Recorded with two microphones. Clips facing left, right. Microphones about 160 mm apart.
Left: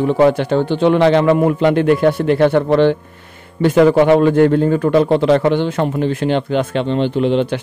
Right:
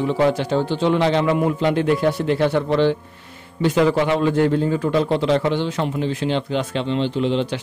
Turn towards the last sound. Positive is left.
turn(degrees=55)  # may be behind; listen again after turning